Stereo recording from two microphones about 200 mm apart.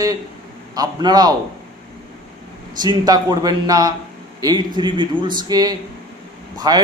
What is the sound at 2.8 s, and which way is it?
A man's voice, 20° right (ahead or behind).